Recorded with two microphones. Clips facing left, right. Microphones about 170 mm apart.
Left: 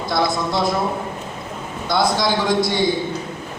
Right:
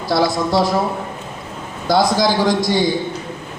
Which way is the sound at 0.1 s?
35° right (ahead or behind).